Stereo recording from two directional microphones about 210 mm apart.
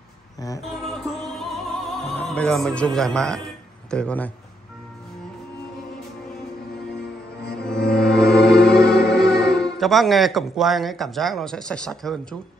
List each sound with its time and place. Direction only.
1.4 s opera: centre (ahead or behind)
3.9 s a man's voice: 5° left (ahead or behind)
7.7 s music: 50° left (ahead or behind)
9.5 s speech: centre (ahead or behind)